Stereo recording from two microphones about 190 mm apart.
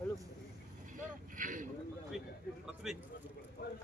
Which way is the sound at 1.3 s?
45° right (ahead or behind).